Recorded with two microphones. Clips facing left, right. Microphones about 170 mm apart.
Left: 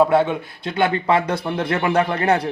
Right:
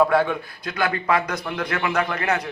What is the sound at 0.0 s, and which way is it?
Speech, 25° left (ahead or behind).